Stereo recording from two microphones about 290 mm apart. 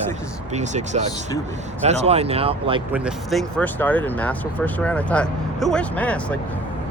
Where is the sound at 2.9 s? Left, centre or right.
Centre.